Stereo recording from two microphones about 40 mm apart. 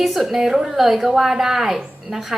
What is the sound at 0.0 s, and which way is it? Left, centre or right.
A woman's voice, centre.